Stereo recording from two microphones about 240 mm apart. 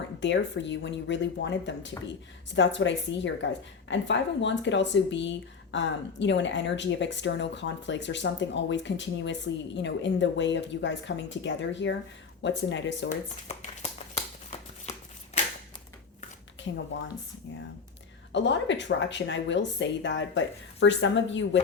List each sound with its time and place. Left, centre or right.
0.2 s a woman's voice: left
13.1 s speech: left
16.7 s a woman's voice: left
18.3 s a woman's voice: left